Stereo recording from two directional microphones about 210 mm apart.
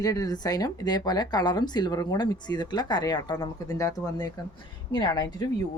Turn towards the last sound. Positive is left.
turn(degrees=20)  # may be behind; listen again after turning